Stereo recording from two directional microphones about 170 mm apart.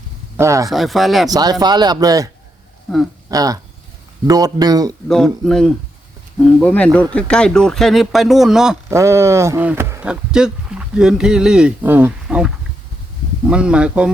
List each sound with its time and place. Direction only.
0.3 s speech: 15° right (ahead or behind)
0.7 s speech: centre (ahead or behind)
1.3 s speech: 20° right (ahead or behind)
2.9 s speech: centre (ahead or behind)
3.2 s speech: 20° right (ahead or behind)
5.0 s speech: 5° left (ahead or behind)
8.9 s speech: 15° right (ahead or behind)
13.5 s speech: 5° right (ahead or behind)